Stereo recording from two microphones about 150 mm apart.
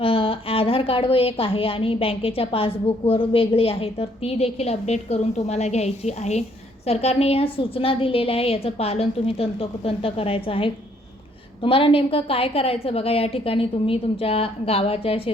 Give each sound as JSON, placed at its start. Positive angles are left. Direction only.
{"t": 0.0, "sound": "a woman's voice", "side_deg": 40}